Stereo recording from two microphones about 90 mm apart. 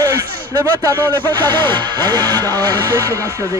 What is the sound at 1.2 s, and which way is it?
Speech, 20° left (ahead or behind).